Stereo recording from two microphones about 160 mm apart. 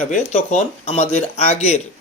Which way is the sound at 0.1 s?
40° left (ahead or behind).